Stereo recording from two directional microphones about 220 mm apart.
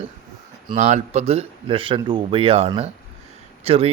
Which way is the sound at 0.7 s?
30° right (ahead or behind).